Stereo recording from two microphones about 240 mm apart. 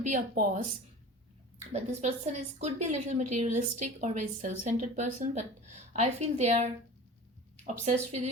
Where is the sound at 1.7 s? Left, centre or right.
Right.